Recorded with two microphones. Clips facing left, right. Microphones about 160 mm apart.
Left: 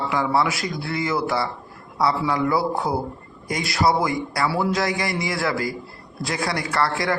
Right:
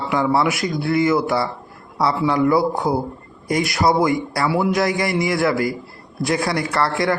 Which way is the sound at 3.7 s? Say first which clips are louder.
Right 2 dB; 25° right (ahead or behind).